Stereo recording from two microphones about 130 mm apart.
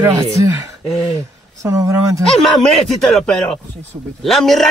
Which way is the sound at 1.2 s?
25° right (ahead or behind).